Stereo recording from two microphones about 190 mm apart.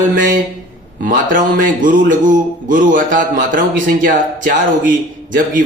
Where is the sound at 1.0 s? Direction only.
45° right (ahead or behind).